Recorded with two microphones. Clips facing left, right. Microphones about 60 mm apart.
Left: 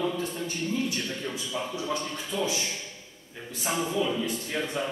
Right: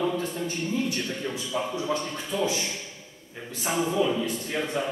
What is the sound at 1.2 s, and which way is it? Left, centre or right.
Speech, centre.